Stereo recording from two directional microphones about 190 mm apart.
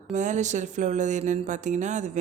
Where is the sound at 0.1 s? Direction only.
40° right (ahead or behind).